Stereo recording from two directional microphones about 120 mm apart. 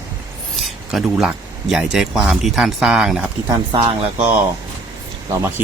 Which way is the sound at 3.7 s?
45° right (ahead or behind).